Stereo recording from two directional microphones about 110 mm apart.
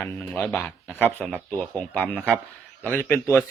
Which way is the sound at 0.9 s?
15° left (ahead or behind).